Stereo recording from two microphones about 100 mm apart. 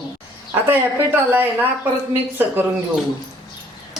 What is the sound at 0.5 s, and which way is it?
A man's voice, 20° right (ahead or behind).